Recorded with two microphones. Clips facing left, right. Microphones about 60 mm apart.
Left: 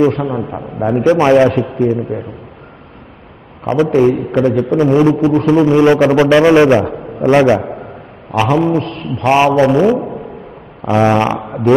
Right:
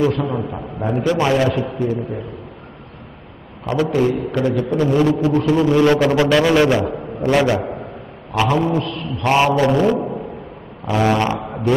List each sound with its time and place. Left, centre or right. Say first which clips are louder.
0.2 s a man's voice: left 3 dB; centre
0.7 s a man's voice: left 7 dB; left
3.6 s a man's voice: left 6 dB; left
8.3 s a sound: left 4 dB; left
8.6 s a man's voice: left 5 dB; left
9.2 s a man's voice: left 5 dB; left
10.0 s a sound: left 1 dB; centre
10.9 s a man's voice: left 5 dB; left